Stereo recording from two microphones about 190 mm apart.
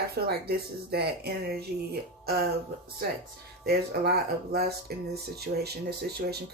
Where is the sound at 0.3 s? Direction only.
55° right (ahead or behind).